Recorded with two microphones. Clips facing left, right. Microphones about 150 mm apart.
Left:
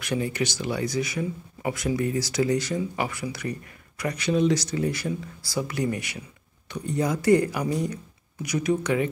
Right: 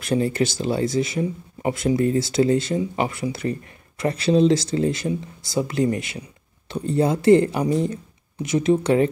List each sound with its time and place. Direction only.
0.0 s speech: 30° right (ahead or behind)